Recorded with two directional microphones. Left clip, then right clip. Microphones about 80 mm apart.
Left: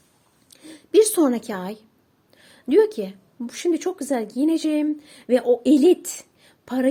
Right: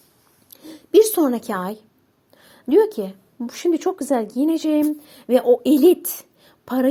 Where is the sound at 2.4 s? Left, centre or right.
Right.